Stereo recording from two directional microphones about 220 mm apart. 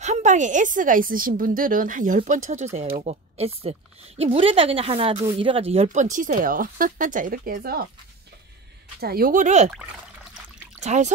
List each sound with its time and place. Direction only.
0.0 s a woman's voice: 30° right (ahead or behind)
9.0 s a woman's voice: 40° right (ahead or behind)
10.8 s speech: 30° right (ahead or behind)